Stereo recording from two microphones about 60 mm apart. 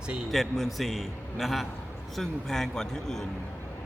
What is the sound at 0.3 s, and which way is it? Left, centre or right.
A man's voice, centre.